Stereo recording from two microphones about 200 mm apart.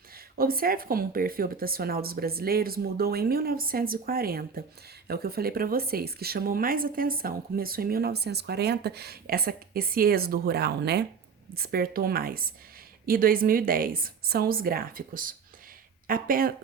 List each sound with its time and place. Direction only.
0.3 s speech: 45° right (ahead or behind)